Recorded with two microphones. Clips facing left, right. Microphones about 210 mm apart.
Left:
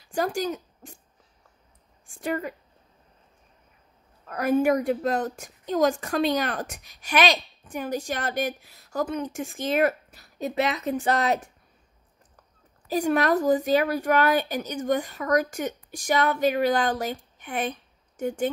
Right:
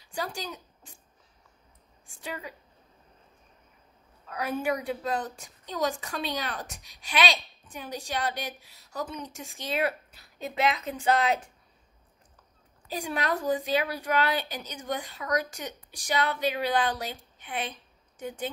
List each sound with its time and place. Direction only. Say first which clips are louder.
0.0 s speech: left 9 dB; 50° left (ahead or behind)
2.2 s a woman's voice: left 10 dB; 50° left (ahead or behind)
4.3 s a woman's voice: left 8 dB; 50° left (ahead or behind)
12.9 s a woman's voice: left 8 dB; 45° left (ahead or behind)